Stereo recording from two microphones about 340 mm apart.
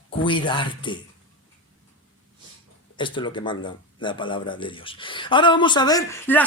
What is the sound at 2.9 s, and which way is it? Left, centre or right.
Speech, centre.